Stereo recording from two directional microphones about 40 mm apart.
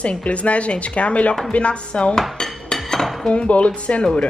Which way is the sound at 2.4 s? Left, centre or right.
Left.